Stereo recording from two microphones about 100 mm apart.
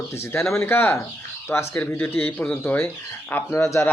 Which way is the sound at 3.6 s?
30° left (ahead or behind).